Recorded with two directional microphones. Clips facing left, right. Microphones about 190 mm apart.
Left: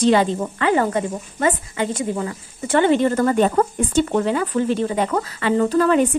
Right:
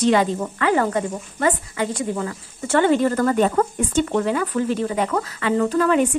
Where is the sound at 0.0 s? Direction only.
30° left (ahead or behind).